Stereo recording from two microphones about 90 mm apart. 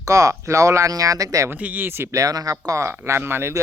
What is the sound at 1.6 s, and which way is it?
Speech, 20° right (ahead or behind).